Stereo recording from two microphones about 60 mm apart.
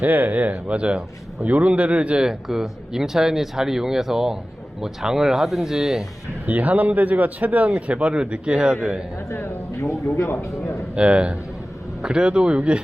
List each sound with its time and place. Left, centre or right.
0.0 s speech: right
2.5 s speech: centre
6.4 s speech: right
9.3 s a man's voice: left
10.9 s speech: centre